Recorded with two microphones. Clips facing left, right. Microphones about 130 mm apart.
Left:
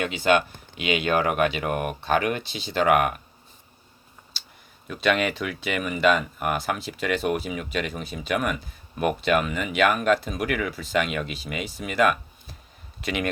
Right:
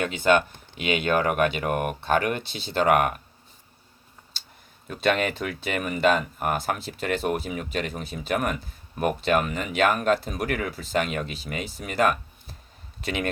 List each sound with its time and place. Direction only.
0.0 s speech: 50° right (ahead or behind)
4.4 s a sound: 50° right (ahead or behind)
4.9 s speech: 50° right (ahead or behind)
8.0 s speech: 55° left (ahead or behind)
8.3 s speech: 50° right (ahead or behind)